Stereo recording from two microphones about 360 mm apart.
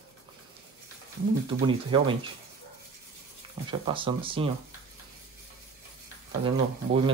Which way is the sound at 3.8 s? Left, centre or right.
Centre.